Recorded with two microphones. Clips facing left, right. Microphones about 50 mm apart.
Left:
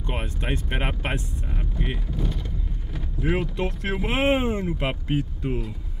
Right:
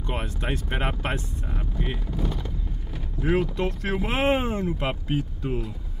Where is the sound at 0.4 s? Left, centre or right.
Centre.